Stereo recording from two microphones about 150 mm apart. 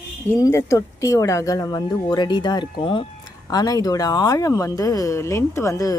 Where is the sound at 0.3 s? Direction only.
20° left (ahead or behind).